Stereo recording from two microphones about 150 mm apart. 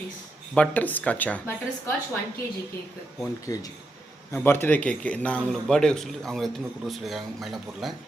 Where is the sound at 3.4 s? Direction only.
25° left (ahead or behind).